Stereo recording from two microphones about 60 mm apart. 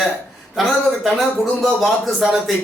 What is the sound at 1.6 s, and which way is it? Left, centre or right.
Speech, centre.